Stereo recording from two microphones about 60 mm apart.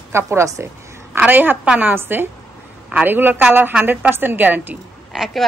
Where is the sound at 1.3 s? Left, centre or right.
Right.